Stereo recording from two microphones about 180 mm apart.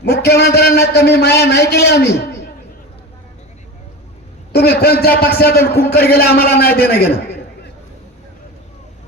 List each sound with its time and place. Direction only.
0.0 s a man's voice: 60° left (ahead or behind)
4.5 s a man's voice: 60° left (ahead or behind)